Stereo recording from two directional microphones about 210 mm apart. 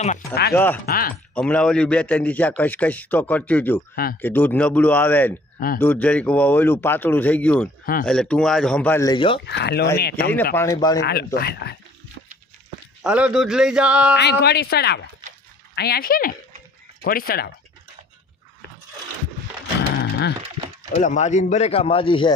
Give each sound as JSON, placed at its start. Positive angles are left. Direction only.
{"t": 0.3, "sound": "speech", "side_deg": 45}
{"t": 1.3, "sound": "a man's voice", "side_deg": 5}
{"t": 3.9, "sound": "speech", "side_deg": 45}
{"t": 4.2, "sound": "a man's voice", "side_deg": 10}
{"t": 9.1, "sound": "speech", "side_deg": 25}
{"t": 9.5, "sound": "speech", "side_deg": 50}
{"t": 10.5, "sound": "a man's voice", "side_deg": 15}
{"t": 11.0, "sound": "speech", "side_deg": 45}
{"t": 13.0, "sound": "speech", "side_deg": -5}
{"t": 14.1, "sound": "speech", "side_deg": 50}
{"t": 20.0, "sound": "a sound", "side_deg": 50}
{"t": 20.9, "sound": "speech", "side_deg": 35}